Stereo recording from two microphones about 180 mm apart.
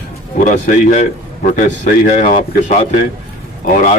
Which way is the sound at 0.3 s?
45° left (ahead or behind).